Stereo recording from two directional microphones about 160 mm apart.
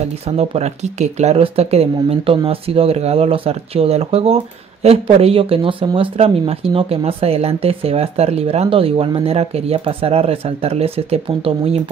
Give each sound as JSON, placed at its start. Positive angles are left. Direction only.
{"t": 0.4, "sound": "speech", "side_deg": -40}